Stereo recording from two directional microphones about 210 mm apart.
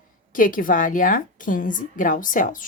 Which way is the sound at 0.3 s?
40° left (ahead or behind).